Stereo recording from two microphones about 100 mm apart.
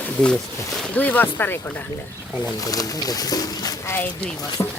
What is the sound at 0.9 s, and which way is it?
Speech, 15° left (ahead or behind).